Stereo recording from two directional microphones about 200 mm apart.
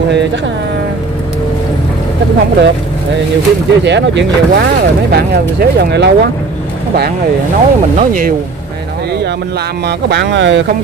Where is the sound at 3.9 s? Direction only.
60° right (ahead or behind).